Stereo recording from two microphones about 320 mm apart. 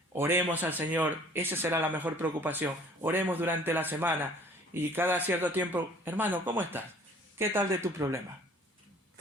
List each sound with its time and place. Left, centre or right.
0.1 s speech: centre